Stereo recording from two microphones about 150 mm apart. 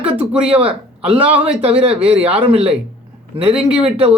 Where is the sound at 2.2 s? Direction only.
10° right (ahead or behind).